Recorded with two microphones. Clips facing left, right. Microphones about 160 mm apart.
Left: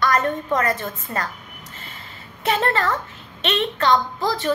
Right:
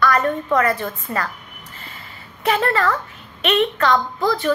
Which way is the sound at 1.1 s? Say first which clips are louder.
Right 2 dB; 20° right (ahead or behind).